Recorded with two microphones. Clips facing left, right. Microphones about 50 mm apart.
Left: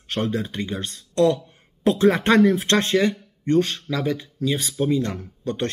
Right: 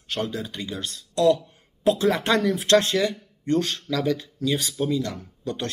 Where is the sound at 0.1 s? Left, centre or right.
Left.